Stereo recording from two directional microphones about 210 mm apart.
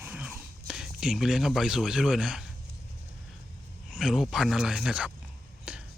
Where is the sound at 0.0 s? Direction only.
5° right (ahead or behind).